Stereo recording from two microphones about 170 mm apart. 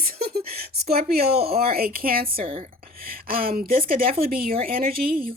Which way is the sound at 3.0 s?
60° right (ahead or behind).